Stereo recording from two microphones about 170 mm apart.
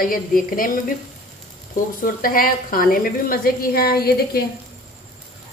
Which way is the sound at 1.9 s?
55° left (ahead or behind).